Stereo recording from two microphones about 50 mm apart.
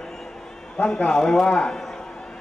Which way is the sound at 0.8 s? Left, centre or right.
Left.